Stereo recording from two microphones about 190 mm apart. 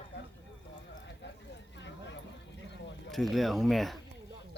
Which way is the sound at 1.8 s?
70° left (ahead or behind).